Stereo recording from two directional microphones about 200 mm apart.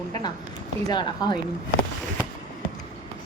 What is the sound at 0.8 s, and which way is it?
Speech, 20° left (ahead or behind).